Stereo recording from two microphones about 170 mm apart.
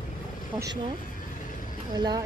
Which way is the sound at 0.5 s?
20° right (ahead or behind).